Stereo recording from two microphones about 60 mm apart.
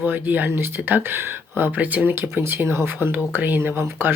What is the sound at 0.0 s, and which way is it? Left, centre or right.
A woman's voice, right.